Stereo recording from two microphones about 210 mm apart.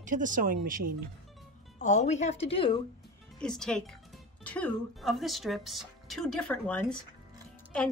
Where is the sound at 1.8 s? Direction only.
35° left (ahead or behind).